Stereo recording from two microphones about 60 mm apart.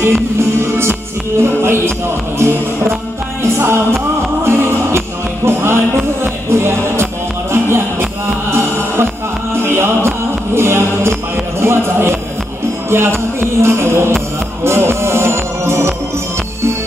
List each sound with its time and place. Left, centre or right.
0.0 s music: right
3.4 s music: right